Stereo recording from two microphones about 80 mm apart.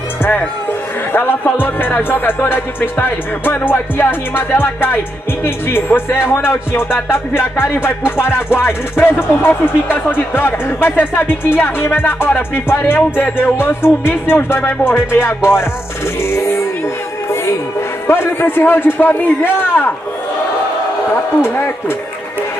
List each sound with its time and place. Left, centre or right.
0.2 s speech: left
1.1 s music: left
18.0 s music: left
21.4 s music: left